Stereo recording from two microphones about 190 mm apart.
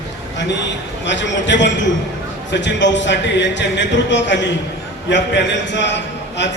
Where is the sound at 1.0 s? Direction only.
70° left (ahead or behind).